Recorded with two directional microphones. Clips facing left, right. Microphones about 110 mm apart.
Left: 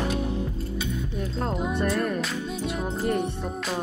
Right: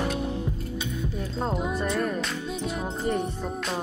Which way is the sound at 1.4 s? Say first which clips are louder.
Left 1 dB; centre (ahead or behind).